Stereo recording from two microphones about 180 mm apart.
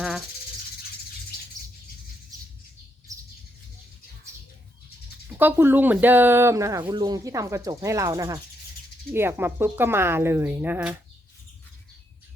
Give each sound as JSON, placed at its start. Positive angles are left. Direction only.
{"t": 3.1, "sound": "bird", "side_deg": -20}
{"t": 5.4, "sound": "speech", "side_deg": -10}